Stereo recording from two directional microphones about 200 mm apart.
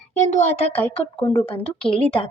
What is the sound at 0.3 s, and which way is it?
Speech, 35° left (ahead or behind).